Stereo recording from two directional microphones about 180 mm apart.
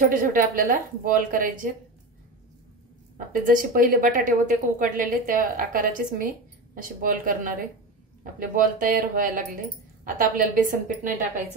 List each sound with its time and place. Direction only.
0.1 s a woman's voice: 50° right (ahead or behind)
3.4 s a woman's voice: 50° right (ahead or behind)